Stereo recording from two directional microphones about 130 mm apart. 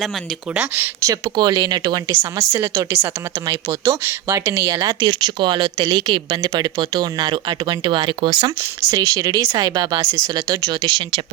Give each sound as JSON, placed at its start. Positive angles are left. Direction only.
{"t": 0.5, "sound": "speech", "side_deg": -10}
{"t": 1.0, "sound": "speech", "side_deg": -30}
{"t": 2.1, "sound": "speech", "side_deg": -20}
{"t": 8.9, "sound": "speech", "side_deg": -25}